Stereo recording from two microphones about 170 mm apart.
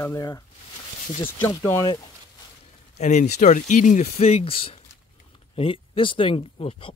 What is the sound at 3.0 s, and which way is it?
Speech, 45° left (ahead or behind).